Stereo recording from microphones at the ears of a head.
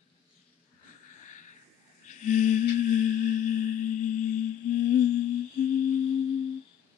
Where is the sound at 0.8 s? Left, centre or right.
Left.